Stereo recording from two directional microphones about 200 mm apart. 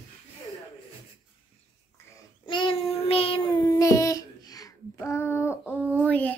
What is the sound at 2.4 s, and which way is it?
Child singing, 25° left (ahead or behind).